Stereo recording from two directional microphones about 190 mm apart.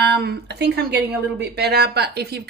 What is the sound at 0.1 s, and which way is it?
Speech, 55° right (ahead or behind).